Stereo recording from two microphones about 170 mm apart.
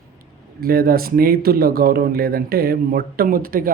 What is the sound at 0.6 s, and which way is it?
Speech, 60° right (ahead or behind).